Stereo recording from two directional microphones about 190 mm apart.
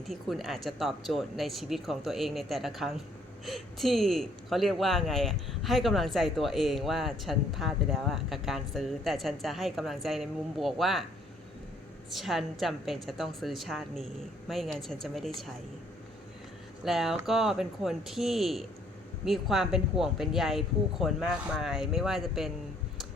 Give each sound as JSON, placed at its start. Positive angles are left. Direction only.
{"t": 0.0, "sound": "speech", "side_deg": 0}
{"t": 12.1, "sound": "speech", "side_deg": 0}
{"t": 16.8, "sound": "speech", "side_deg": 0}